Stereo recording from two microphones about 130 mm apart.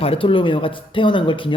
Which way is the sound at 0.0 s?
45° left (ahead or behind).